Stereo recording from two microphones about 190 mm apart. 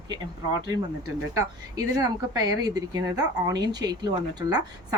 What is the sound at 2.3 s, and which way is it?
Speech, 20° right (ahead or behind).